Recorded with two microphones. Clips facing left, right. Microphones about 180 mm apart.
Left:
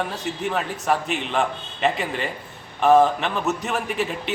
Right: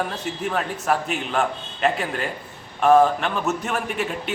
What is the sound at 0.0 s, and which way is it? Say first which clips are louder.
A man's voice: even; centre (ahead or behind).